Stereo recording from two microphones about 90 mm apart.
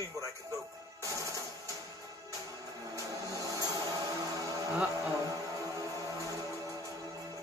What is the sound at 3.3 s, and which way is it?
Music, 40° right (ahead or behind).